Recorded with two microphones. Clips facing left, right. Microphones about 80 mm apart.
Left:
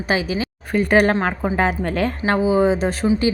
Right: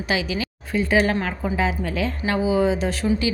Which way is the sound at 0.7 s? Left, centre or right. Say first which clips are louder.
Left 4 dB; left.